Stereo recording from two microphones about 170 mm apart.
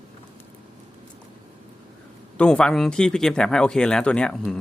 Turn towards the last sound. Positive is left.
turn(degrees=5)  # may be behind; listen again after turning